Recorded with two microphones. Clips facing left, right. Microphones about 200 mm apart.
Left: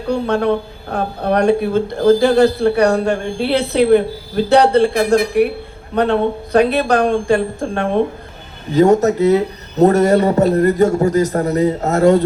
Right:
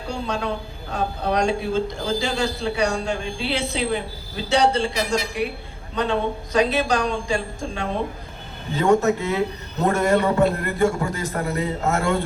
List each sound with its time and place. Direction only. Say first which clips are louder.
0.1 s a woman's voice: left 11 dB; 60° left (ahead or behind)
8.7 s a man's voice: left 7 dB; 40° left (ahead or behind)